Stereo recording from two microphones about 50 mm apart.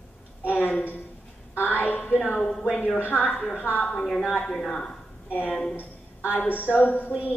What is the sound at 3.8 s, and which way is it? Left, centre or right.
A woman's voice, centre.